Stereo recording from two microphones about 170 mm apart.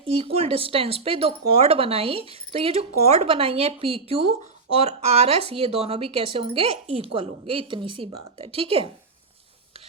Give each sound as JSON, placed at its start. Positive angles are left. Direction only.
{"t": 0.0, "sound": "speech", "side_deg": -35}